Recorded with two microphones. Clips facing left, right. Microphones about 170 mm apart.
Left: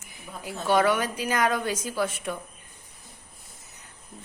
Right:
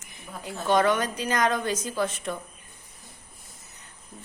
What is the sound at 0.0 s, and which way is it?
A woman's voice, 5° left (ahead or behind).